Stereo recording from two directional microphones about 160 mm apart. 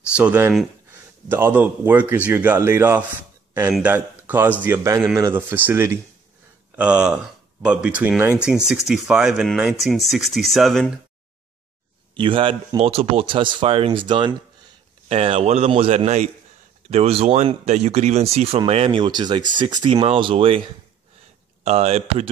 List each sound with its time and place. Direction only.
0.1 s speech: 10° right (ahead or behind)
12.2 s speech: 30° right (ahead or behind)
21.6 s speech: 40° right (ahead or behind)